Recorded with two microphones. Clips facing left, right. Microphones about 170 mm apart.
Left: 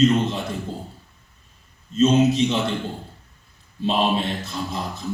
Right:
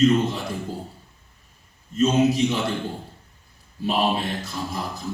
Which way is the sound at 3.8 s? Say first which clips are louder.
Left 2 dB; 25° left (ahead or behind).